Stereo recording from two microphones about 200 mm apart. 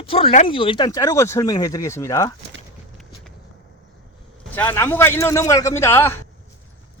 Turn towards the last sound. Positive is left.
turn(degrees=10)  # may be behind; listen again after turning